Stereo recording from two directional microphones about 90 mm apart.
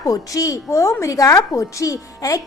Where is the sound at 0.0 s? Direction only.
40° left (ahead or behind).